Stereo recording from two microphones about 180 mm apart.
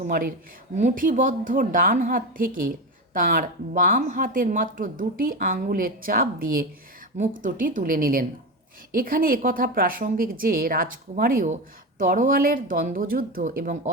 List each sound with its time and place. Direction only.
0.1 s a woman's voice: 50° right (ahead or behind)